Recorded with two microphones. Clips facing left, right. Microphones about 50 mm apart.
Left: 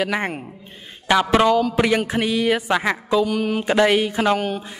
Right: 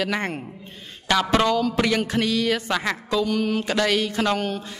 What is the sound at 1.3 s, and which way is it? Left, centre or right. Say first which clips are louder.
Music: left 4 dB; centre.